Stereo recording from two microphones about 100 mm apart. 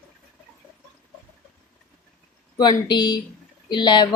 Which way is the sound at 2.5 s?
45° left (ahead or behind).